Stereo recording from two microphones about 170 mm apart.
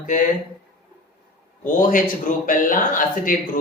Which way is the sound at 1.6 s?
50° left (ahead or behind).